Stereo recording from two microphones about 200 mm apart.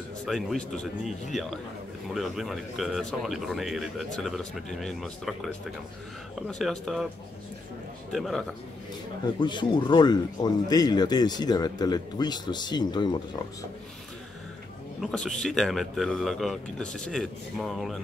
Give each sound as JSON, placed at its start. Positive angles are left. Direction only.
{"t": 0.2, "sound": "speech", "side_deg": 0}
{"t": 8.1, "sound": "speech", "side_deg": 0}
{"t": 9.4, "sound": "speech", "side_deg": 25}
{"t": 15.0, "sound": "speech", "side_deg": 5}